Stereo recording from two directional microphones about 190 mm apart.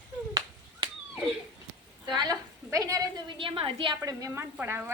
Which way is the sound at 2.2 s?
20° right (ahead or behind).